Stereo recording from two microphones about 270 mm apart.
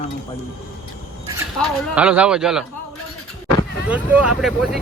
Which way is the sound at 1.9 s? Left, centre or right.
Centre.